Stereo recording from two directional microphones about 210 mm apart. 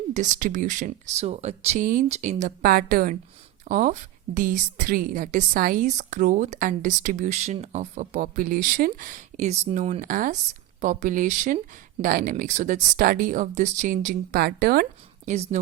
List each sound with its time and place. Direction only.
0.1 s a woman's voice: 35° right (ahead or behind)